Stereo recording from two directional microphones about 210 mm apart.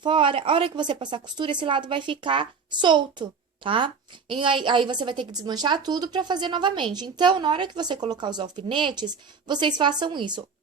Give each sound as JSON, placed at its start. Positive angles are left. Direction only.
{"t": 0.0, "sound": "a woman's voice", "side_deg": -25}